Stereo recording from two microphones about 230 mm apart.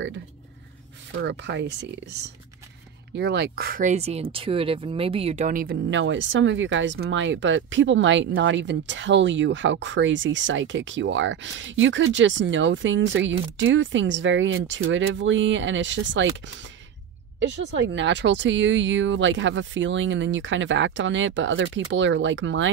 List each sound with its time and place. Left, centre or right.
1.1 s speech: right
3.2 s speech: right
5.9 s speech: right